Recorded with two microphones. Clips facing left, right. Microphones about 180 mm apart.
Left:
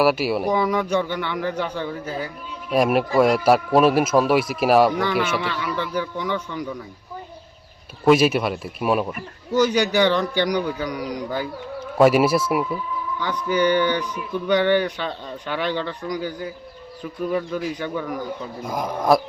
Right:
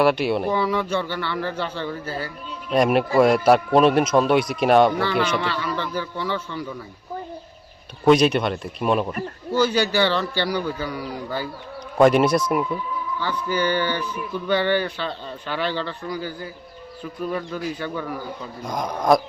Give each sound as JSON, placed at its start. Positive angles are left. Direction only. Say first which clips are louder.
{"t": 0.0, "sound": "speech", "louder": "even", "side_deg": 5}
{"t": 2.7, "sound": "speech", "louder": "even", "side_deg": 0}
{"t": 8.0, "sound": "speech", "louder": "even", "side_deg": 5}